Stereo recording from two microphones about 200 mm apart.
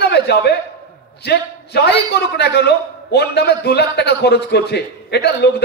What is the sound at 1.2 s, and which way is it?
A man's voice, 55° left (ahead or behind).